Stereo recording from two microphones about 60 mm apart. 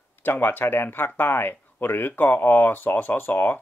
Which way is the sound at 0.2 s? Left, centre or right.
Left.